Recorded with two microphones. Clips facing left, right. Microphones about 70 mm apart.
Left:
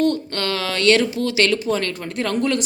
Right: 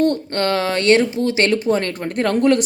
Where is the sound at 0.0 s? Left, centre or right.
Right.